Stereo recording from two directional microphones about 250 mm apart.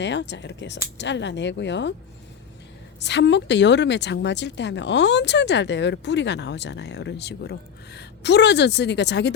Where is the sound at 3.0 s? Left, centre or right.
Left.